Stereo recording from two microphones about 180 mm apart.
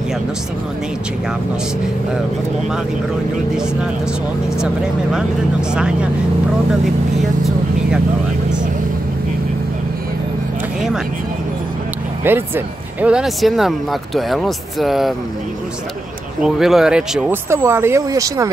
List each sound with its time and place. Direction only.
12.3 s speech: 10° right (ahead or behind)
16.4 s speech: centre (ahead or behind)
17.5 s speech: 15° right (ahead or behind)